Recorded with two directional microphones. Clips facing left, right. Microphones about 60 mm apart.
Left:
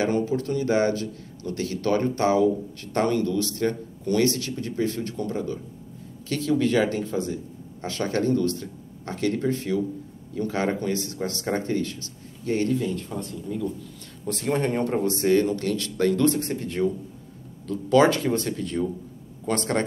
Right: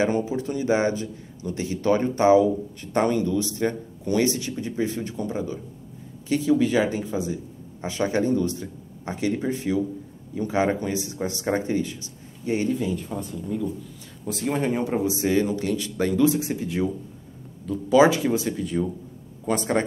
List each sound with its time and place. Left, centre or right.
0.0 s speech: centre